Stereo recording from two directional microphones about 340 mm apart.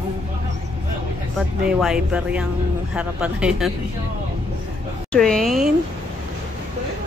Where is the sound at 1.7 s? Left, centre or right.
Centre.